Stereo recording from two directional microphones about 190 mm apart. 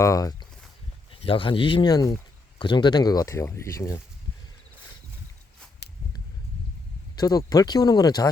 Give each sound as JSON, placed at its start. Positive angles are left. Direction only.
{"t": 0.0, "sound": "speech", "side_deg": 15}
{"t": 7.2, "sound": "speech", "side_deg": 20}